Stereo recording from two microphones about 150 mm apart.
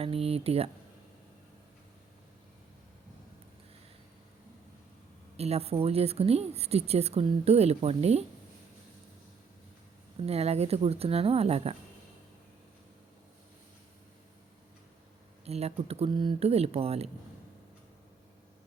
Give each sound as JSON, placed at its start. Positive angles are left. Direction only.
{"t": 0.0, "sound": "speech", "side_deg": -40}
{"t": 5.4, "sound": "speech", "side_deg": -45}
{"t": 10.2, "sound": "speech", "side_deg": -45}
{"t": 15.4, "sound": "speech", "side_deg": -45}